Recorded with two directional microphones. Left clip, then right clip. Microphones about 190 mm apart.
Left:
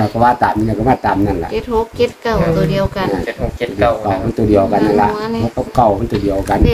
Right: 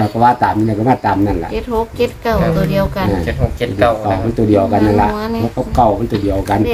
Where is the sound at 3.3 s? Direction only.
45° right (ahead or behind).